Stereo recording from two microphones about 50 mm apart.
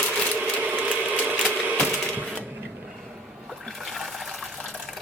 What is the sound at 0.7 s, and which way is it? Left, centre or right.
Ratchet, right.